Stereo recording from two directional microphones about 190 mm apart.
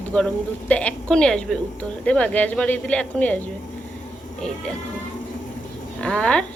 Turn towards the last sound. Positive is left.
turn(degrees=5)  # may be behind; listen again after turning